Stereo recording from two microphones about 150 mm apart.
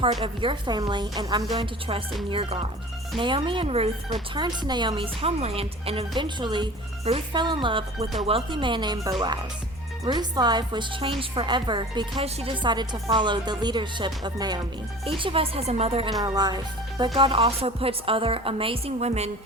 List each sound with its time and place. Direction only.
0.0 s a woman's voice: 35° right (ahead or behind)
4.4 s a woman's voice: 30° right (ahead or behind)
16.2 s a woman's voice: 25° right (ahead or behind); by 19.3 s 45° right (ahead or behind)